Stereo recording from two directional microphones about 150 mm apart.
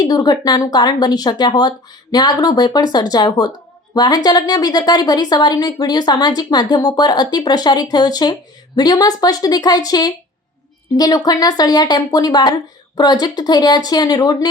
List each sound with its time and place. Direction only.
0.0 s a woman's voice: 25° left (ahead or behind)